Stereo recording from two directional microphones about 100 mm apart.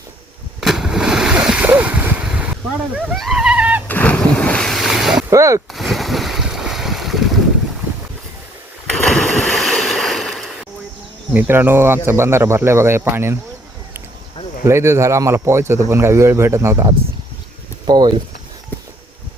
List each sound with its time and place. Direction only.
0.6 s a sound: 5° right (ahead or behind)
3.8 s splash: 15° left (ahead or behind); by 5.2 s centre (ahead or behind)
5.3 s speech: 30° right (ahead or behind)
5.7 s boat: centre (ahead or behind)
9.0 s boat: centre (ahead or behind)
11.3 s speech: 20° right (ahead or behind)
14.6 s speech: 25° right (ahead or behind)
17.8 s speech: 45° right (ahead or behind)